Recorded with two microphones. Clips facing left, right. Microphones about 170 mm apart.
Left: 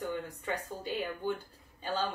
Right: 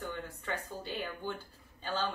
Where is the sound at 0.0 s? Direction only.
10° left (ahead or behind).